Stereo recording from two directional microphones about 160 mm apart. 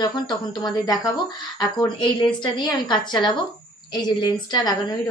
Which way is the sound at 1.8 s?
30° left (ahead or behind).